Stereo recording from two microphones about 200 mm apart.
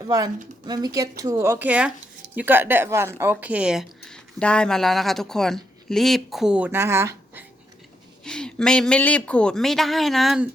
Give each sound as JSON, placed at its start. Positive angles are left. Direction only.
{"t": 0.6, "sound": "speech", "side_deg": -20}
{"t": 8.2, "sound": "speech", "side_deg": 5}